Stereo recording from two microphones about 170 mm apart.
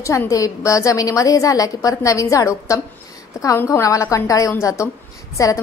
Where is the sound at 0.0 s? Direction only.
20° left (ahead or behind).